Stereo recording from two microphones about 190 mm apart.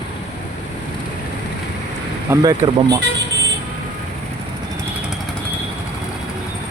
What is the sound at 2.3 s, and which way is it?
Speech, 15° right (ahead or behind).